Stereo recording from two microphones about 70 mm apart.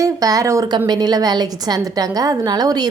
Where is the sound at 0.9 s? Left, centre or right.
Right.